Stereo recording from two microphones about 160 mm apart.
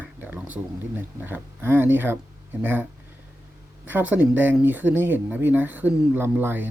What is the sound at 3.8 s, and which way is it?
Speech, 10° right (ahead or behind).